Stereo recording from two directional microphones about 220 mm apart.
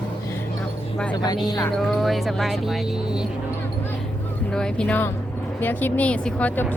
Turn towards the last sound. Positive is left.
turn(degrees=10)  # may be behind; listen again after turning